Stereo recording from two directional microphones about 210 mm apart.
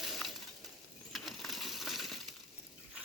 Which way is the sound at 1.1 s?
Centre (ahead or behind).